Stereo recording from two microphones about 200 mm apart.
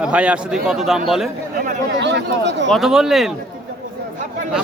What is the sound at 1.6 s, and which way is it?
Chatter, 50° right (ahead or behind).